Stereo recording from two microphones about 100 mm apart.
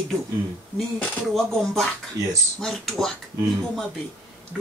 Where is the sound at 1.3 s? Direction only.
5° left (ahead or behind).